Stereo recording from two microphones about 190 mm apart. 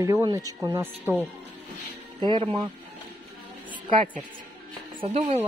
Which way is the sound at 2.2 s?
25° right (ahead or behind).